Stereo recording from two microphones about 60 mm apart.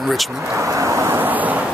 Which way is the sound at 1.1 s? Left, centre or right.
Right.